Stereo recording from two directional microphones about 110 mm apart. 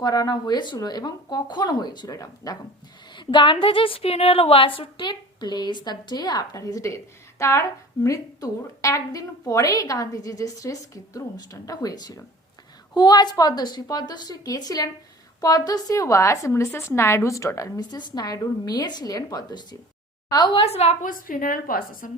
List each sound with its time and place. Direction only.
0.0 s a woman's voice: 35° left (ahead or behind)
3.2 s a woman's voice: 45° left (ahead or behind)
20.3 s a woman's voice: 50° left (ahead or behind); by 20.9 s 70° left (ahead or behind)